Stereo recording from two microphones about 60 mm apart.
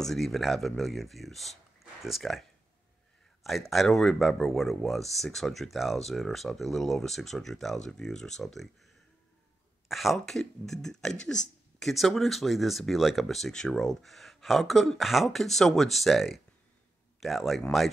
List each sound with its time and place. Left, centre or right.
0.0 s speech: centre
3.4 s speech: centre
9.8 s speech: centre
11.9 s speech: centre